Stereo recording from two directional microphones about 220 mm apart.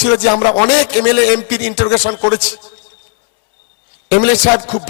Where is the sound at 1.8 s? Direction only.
25° left (ahead or behind).